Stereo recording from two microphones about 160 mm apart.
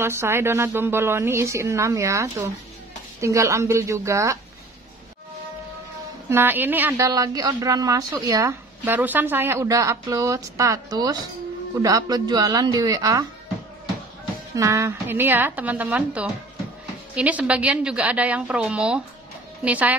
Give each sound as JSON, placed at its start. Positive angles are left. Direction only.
{"t": 0.0, "sound": "a woman's voice", "side_deg": -15}
{"t": 6.2, "sound": "a woman's voice", "side_deg": -15}
{"t": 7.1, "sound": "a woman's voice", "side_deg": -25}
{"t": 14.5, "sound": "a woman's voice", "side_deg": -20}